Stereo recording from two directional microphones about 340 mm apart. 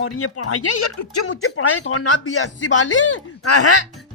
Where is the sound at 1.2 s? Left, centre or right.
Left.